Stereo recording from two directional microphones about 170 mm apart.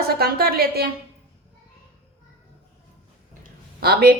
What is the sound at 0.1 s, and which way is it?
Speech, 65° right (ahead or behind).